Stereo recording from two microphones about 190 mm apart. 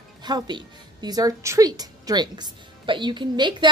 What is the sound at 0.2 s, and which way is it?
A woman's voice, 25° right (ahead or behind).